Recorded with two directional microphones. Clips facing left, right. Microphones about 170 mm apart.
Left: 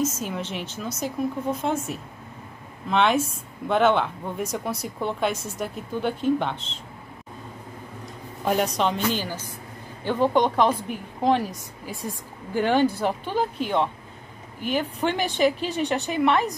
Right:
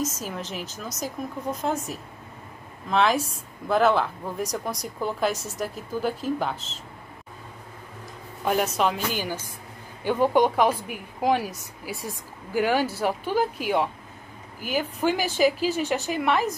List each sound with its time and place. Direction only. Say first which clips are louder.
0.1 s speech: left 3 dB; centre (ahead or behind)
0.8 s speech: left 4 dB; 40° right (ahead or behind)
1.5 s speech: left 2 dB; centre (ahead or behind)
8.5 s a woman's voice: left 1 dB; 5° right (ahead or behind)